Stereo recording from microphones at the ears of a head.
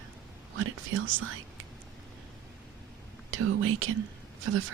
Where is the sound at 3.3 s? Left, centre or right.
Right.